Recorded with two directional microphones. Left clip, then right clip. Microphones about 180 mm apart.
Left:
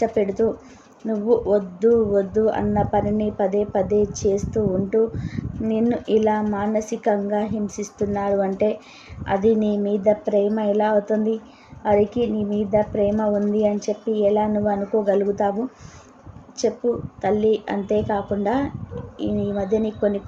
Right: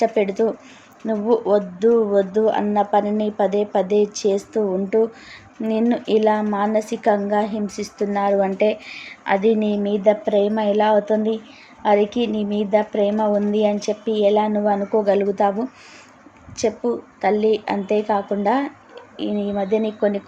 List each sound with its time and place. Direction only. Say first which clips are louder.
0.0 s speech: right 2 dB; 15° right (ahead or behind)
17.2 s speech: right 3 dB; 10° right (ahead or behind)